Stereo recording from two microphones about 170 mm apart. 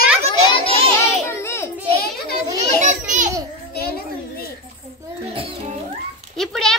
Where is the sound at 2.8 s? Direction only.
50° right (ahead or behind).